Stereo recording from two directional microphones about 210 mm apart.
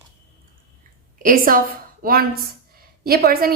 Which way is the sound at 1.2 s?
40° right (ahead or behind).